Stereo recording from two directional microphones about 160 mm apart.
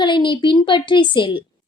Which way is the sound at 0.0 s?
30° left (ahead or behind).